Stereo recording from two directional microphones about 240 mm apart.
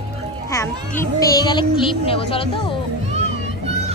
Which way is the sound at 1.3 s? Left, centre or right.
Centre.